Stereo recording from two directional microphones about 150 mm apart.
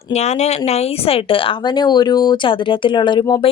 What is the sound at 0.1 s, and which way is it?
Speech, 50° left (ahead or behind).